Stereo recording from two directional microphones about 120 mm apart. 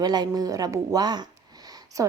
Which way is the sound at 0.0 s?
35° right (ahead or behind).